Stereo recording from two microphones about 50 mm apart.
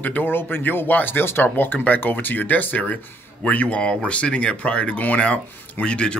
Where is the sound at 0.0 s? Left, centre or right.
Left.